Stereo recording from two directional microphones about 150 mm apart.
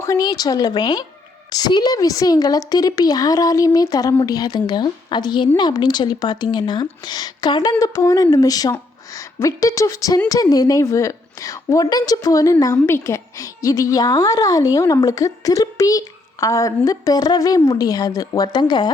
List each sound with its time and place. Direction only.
0.0 s a woman's voice: 25° left (ahead or behind)